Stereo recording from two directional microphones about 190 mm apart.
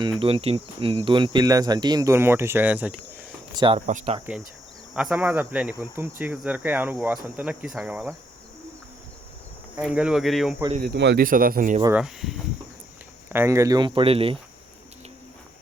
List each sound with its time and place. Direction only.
0.0 s speech: 25° right (ahead or behind); by 2.9 s 10° right (ahead or behind)
3.5 s speech: 25° right (ahead or behind)
3.8 s speech: 35° right (ahead or behind)
4.9 s speech: 5° right (ahead or behind)
9.7 s speech: 5° right (ahead or behind)
10.8 s speech: 65° right (ahead or behind)
11.2 s speech: 45° right (ahead or behind)
11.9 s speech: centre (ahead or behind)
13.3 s speech: 15° right (ahead or behind); by 14.3 s 30° right (ahead or behind)